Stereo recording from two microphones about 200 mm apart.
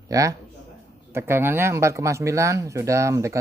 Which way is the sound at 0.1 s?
15° right (ahead or behind).